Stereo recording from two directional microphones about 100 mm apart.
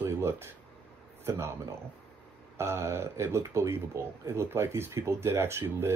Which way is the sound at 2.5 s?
30° right (ahead or behind).